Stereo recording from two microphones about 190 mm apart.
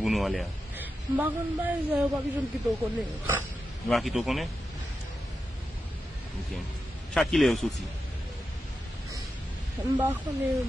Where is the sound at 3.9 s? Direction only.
Centre (ahead or behind).